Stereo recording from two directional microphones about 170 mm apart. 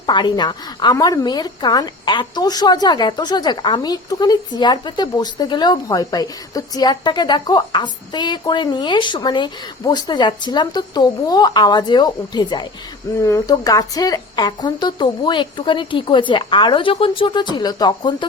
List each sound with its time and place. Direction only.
0.0 s a woman's voice: 25° left (ahead or behind)